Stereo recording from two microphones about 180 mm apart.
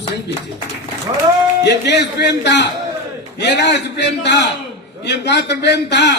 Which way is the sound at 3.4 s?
70° left (ahead or behind).